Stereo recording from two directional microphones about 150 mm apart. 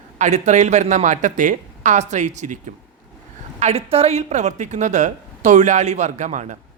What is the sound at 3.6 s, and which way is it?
A man's voice, 45° right (ahead or behind).